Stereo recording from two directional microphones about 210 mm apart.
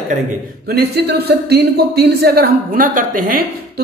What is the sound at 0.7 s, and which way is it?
A woman's voice, 50° right (ahead or behind).